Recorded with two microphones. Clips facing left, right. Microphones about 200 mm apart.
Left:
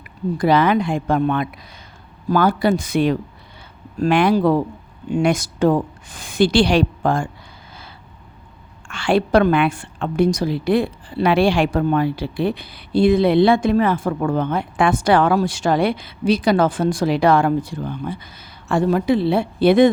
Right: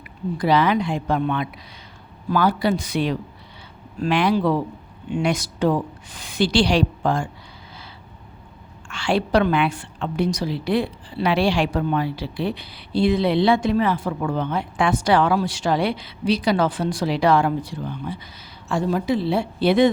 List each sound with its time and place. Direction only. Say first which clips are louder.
0.3 s a woman's voice: left 3 dB; 50° left (ahead or behind)
8.9 s a woman's voice: left 4 dB; 55° left (ahead or behind)
18.7 s a woman's voice: left 4 dB; 60° left (ahead or behind)